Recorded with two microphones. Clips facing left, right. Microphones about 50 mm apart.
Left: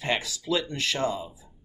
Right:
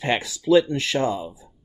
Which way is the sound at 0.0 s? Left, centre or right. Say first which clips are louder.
Right 5 dB; right.